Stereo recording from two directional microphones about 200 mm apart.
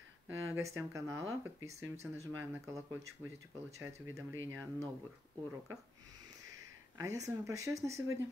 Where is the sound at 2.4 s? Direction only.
15° right (ahead or behind).